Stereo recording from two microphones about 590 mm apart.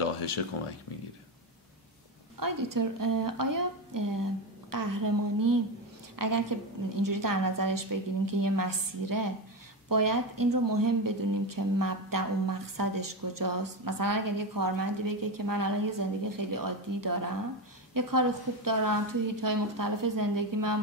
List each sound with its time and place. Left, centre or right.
2.4 s speech: right